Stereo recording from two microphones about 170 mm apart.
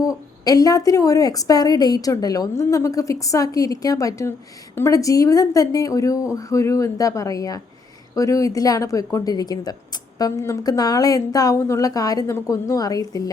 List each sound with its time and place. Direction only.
0.0 s a woman's voice: 20° left (ahead or behind)